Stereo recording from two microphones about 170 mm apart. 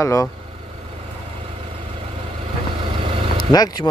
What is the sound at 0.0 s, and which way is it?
Speech, 20° left (ahead or behind).